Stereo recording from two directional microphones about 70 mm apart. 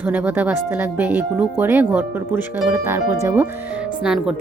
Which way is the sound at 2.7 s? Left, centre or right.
Right.